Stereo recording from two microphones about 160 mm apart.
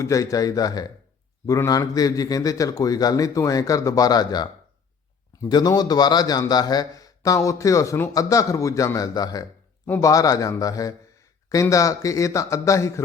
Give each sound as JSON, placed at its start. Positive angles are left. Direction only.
{"t": 0.0, "sound": "speech", "side_deg": 20}